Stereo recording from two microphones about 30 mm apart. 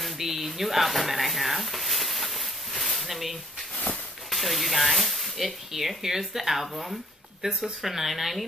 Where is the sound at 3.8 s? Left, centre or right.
Left.